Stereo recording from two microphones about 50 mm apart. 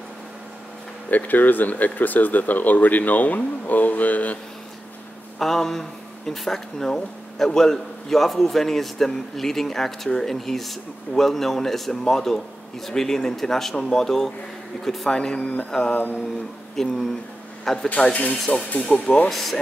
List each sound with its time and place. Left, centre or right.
1.1 s speech: left
5.4 s a man's voice: centre
18.1 s speech: left
19.2 s speech: centre